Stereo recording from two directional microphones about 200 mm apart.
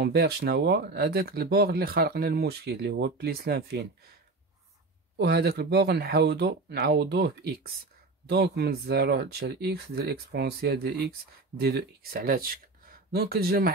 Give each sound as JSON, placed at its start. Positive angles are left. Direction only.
{"t": 0.0, "sound": "speech", "side_deg": -55}
{"t": 5.1, "sound": "speech", "side_deg": -55}